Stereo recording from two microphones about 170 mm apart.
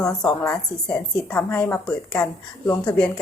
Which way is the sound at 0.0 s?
5° left (ahead or behind).